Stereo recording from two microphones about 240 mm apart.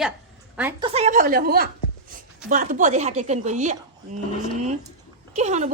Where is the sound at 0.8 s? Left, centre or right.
Right.